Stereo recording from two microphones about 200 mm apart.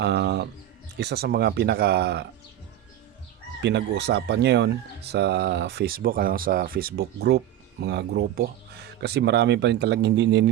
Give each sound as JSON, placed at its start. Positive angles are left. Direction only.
{"t": 0.0, "sound": "a sound", "side_deg": -60}
{"t": 0.9, "sound": "speech", "side_deg": -55}
{"t": 3.6, "sound": "speech", "side_deg": -60}